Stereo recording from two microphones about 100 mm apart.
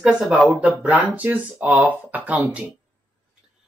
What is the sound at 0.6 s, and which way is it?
Speech, 15° right (ahead or behind).